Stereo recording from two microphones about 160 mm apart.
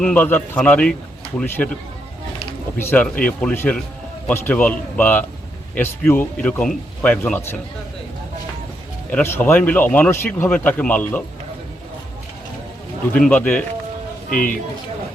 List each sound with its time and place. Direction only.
0.0 s speech: 10° left (ahead or behind)
9.0 s speech: 10° left (ahead or behind)
13.1 s speech: 5° left (ahead or behind)
14.3 s a man's voice: 60° left (ahead or behind)